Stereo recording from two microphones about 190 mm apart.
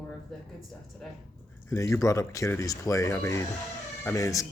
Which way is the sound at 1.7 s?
15° left (ahead or behind).